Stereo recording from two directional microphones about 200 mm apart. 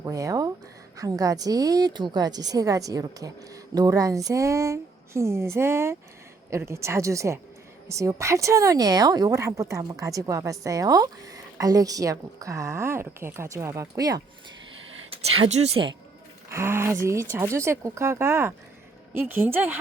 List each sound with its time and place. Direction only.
0.0 s speech: 15° right (ahead or behind)
15.1 s speech: 30° right (ahead or behind)
16.5 s speech: 15° right (ahead or behind)